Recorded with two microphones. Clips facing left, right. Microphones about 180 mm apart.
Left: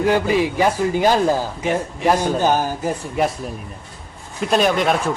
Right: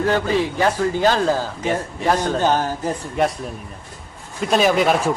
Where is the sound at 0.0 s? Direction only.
10° left (ahead or behind).